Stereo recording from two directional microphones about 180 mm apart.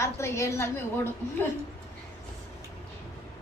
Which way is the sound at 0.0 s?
15° left (ahead or behind).